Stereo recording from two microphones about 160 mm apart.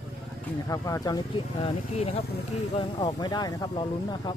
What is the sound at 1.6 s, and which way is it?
Speech, 40° left (ahead or behind).